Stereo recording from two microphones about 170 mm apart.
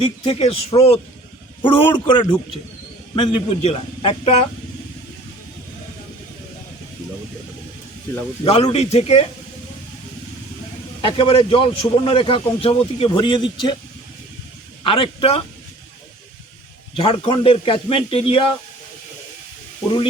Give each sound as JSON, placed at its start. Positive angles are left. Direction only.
{"t": 0.0, "sound": "a man's voice", "side_deg": 35}
{"t": 8.4, "sound": "a man's voice", "side_deg": 35}
{"t": 11.0, "sound": "a man's voice", "side_deg": 35}
{"t": 14.8, "sound": "a man's voice", "side_deg": 30}
{"t": 17.0, "sound": "a man's voice", "side_deg": 35}